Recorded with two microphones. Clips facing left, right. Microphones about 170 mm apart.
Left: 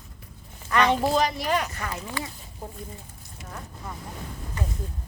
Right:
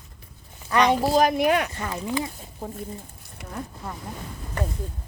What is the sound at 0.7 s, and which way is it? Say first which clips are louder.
Speech: right 2 dB; 15° right (ahead or behind).